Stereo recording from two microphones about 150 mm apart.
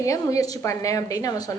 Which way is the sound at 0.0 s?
25° left (ahead or behind).